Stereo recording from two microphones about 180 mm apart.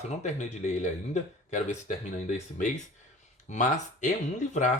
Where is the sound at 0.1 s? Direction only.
40° left (ahead or behind).